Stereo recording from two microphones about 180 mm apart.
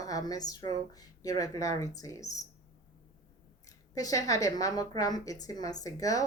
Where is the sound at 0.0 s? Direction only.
20° left (ahead or behind).